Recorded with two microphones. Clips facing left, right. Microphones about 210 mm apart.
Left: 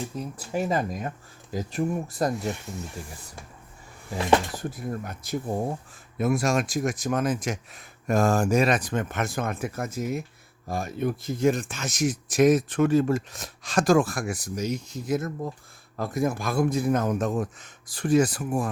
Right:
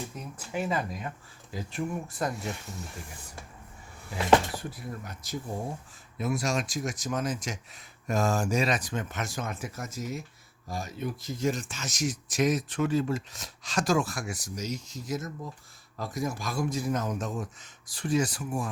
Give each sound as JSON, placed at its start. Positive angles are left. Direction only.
{"t": 0.2, "sound": "speech", "side_deg": 40}
{"t": 4.7, "sound": "speech", "side_deg": 50}